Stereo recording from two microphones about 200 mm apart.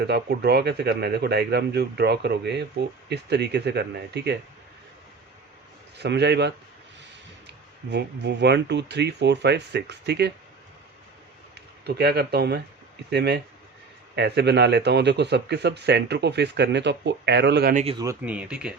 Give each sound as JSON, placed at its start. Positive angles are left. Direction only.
{"t": 0.0, "sound": "speech", "side_deg": -55}
{"t": 6.0, "sound": "speech", "side_deg": -60}
{"t": 7.9, "sound": "speech", "side_deg": -60}
{"t": 11.5, "sound": "speech", "side_deg": -55}
{"t": 18.0, "sound": "speech", "side_deg": -10}